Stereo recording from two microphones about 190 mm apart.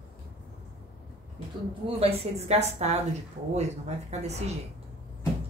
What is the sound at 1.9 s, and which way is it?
A woman's voice, 35° right (ahead or behind).